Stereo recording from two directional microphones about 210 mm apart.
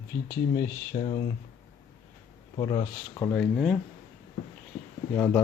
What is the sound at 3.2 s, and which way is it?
Speech, 10° left (ahead or behind).